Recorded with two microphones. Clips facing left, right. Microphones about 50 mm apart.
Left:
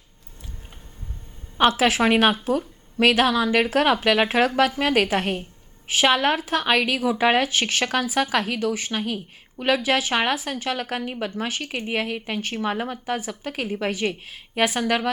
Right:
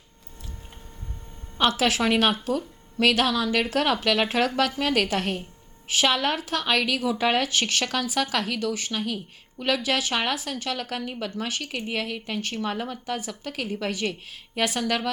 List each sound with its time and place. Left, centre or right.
1.5 s speech: left